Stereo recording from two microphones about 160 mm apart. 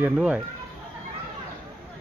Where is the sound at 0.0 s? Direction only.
10° right (ahead or behind).